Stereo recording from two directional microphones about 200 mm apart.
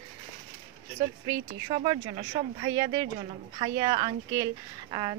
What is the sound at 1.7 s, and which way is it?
A woman's voice, 30° right (ahead or behind).